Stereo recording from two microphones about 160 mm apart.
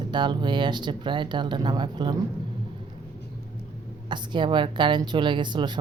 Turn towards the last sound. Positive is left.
turn(degrees=-30)  # may be behind; listen again after turning